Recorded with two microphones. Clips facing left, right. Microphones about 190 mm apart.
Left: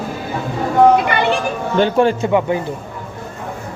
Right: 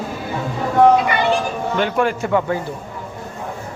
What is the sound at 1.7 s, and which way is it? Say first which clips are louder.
Speech: left 6 dB; 30° left (ahead or behind).